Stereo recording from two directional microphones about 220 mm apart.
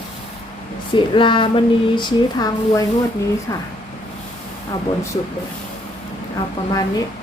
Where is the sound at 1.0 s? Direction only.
20° left (ahead or behind).